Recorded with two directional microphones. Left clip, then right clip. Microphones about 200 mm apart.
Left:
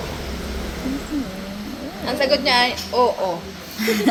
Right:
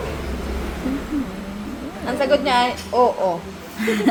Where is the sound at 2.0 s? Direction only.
25° right (ahead or behind).